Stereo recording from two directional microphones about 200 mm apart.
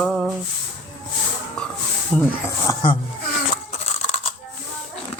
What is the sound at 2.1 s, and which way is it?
Speech, centre (ahead or behind).